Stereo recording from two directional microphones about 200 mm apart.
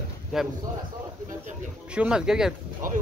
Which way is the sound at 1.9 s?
5° right (ahead or behind).